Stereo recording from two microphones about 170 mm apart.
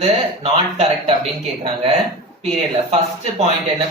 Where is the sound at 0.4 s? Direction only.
35° right (ahead or behind).